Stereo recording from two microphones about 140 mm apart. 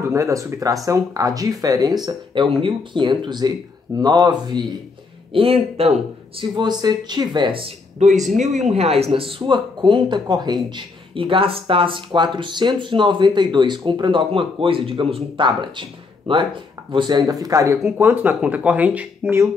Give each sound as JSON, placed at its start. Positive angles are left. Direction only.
{"t": 0.1, "sound": "speech", "side_deg": -20}
{"t": 5.3, "sound": "speech", "side_deg": -40}
{"t": 8.0, "sound": "speech", "side_deg": -60}
{"t": 8.6, "sound": "speech", "side_deg": -50}